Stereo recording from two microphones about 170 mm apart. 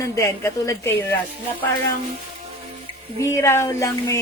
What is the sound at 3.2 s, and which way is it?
Speech, 15° left (ahead or behind).